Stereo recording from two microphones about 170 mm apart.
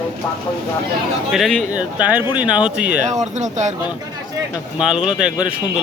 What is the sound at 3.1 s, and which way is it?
Speech, 45° right (ahead or behind).